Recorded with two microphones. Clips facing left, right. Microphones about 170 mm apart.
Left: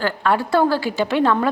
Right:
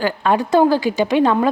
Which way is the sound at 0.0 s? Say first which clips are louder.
Right 2 dB; 20° right (ahead or behind).